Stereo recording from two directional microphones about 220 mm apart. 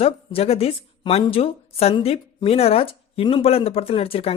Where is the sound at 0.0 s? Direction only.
25° left (ahead or behind).